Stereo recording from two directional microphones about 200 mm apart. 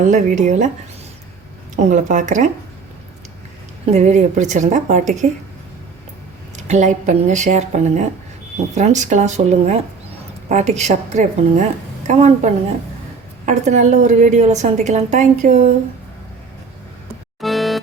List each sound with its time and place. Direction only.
0.0 s a woman's voice: 40° right (ahead or behind)
1.7 s a woman's voice: 40° right (ahead or behind)
3.9 s a woman's voice: 35° right (ahead or behind)
6.6 s a woman's voice: 35° right (ahead or behind)
17.4 s music: centre (ahead or behind)